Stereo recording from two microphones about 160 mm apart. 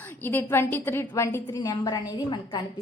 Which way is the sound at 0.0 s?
10° left (ahead or behind).